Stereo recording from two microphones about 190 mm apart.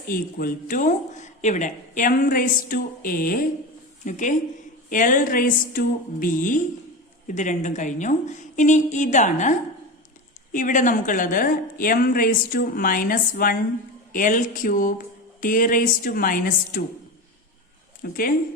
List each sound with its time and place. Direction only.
0.1 s a woman's voice: 50° left (ahead or behind)
18.0 s speech: 50° left (ahead or behind)